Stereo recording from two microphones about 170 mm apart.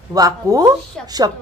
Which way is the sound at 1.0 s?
5° left (ahead or behind).